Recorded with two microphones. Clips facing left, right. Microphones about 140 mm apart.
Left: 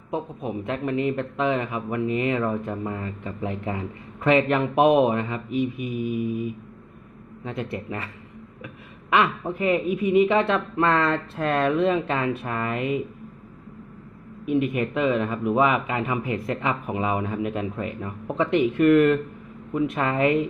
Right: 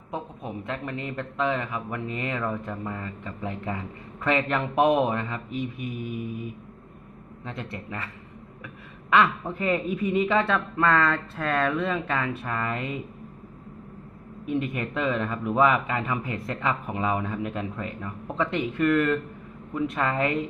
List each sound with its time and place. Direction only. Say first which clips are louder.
0.1 s speech: left 5 dB; 20° left (ahead or behind)
7.7 s speech: left 4 dB; 20° left (ahead or behind)
9.1 s speech: even; 15° left (ahead or behind)
10.2 s speech: left 3 dB; 20° left (ahead or behind)
14.7 s speech: left 5 dB; 10° left (ahead or behind)